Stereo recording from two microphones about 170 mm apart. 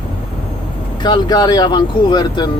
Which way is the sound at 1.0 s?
25° left (ahead or behind).